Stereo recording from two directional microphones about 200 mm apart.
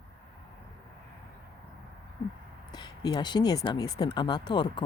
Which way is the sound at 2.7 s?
20° left (ahead or behind).